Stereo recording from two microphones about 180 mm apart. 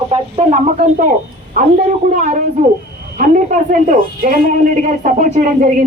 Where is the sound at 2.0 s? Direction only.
45° right (ahead or behind).